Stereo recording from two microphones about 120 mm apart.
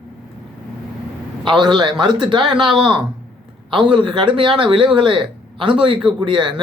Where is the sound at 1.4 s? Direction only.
40° right (ahead or behind).